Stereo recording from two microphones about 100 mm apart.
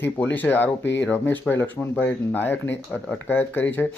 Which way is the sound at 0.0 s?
15° left (ahead or behind).